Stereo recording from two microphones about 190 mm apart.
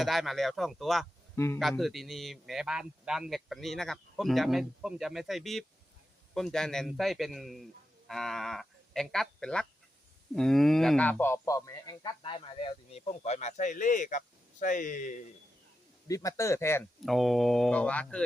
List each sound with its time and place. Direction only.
0.0 s a man's voice: centre (ahead or behind); by 15.2 s 45° left (ahead or behind)
16.0 s speech: 15° left (ahead or behind)
17.1 s a man's voice: centre (ahead or behind)